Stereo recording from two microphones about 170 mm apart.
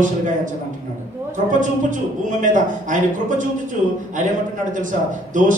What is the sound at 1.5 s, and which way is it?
A man's voice, 50° right (ahead or behind).